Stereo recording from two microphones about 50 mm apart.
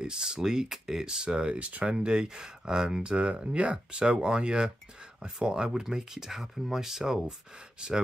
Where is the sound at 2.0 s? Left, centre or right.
Centre.